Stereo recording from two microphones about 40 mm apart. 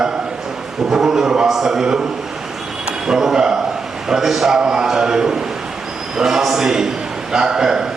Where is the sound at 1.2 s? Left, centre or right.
Right.